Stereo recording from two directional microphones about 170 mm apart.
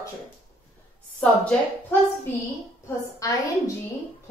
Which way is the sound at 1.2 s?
5° left (ahead or behind).